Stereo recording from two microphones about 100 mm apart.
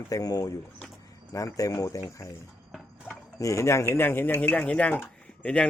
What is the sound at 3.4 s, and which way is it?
Speech, 30° left (ahead or behind).